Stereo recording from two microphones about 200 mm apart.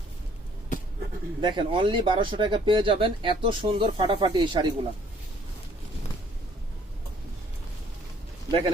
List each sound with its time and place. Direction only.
1.4 s speech: 25° right (ahead or behind)
8.4 s a man's voice: 25° right (ahead or behind)